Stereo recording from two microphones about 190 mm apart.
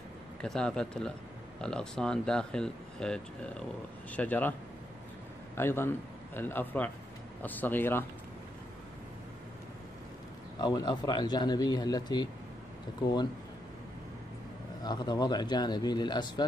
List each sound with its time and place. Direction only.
0.4 s a man's voice: 5° left (ahead or behind)
5.6 s a man's voice: 10° left (ahead or behind)
10.6 s speech: 20° left (ahead or behind)
14.8 s speech: 20° left (ahead or behind)